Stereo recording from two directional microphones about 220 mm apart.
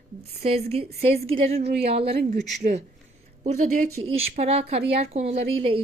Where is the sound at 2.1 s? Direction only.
35° right (ahead or behind).